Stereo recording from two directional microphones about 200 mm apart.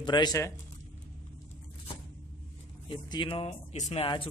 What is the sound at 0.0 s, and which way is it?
Speech, 20° left (ahead or behind).